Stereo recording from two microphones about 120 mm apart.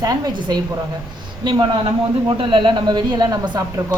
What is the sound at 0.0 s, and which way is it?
Speech, 35° right (ahead or behind).